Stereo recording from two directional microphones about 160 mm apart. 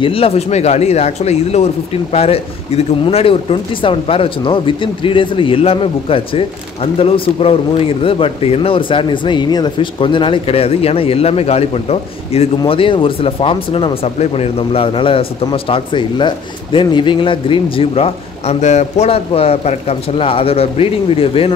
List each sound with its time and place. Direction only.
0.0 s speech: 35° left (ahead or behind)